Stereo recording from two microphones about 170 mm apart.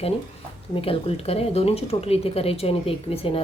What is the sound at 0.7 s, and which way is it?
Speech, 35° left (ahead or behind).